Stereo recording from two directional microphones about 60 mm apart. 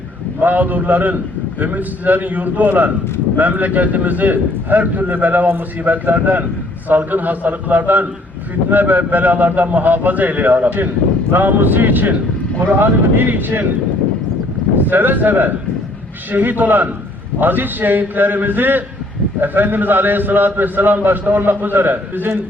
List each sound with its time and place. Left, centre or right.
0.3 s a man's voice: right
14.8 s a man's voice: right